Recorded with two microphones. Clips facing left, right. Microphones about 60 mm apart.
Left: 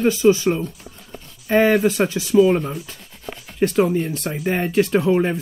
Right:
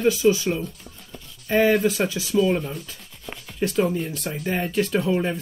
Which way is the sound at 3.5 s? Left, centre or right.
Left.